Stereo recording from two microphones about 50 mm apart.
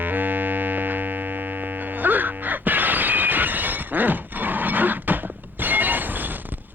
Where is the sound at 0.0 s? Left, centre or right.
Right.